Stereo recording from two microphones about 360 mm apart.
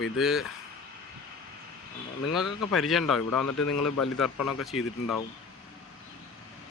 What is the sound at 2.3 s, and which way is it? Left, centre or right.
Speech, centre.